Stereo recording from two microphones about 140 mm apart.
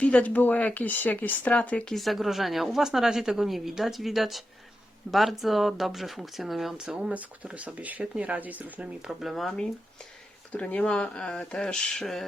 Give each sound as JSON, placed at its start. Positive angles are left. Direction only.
{"t": 0.0, "sound": "speech", "side_deg": 10}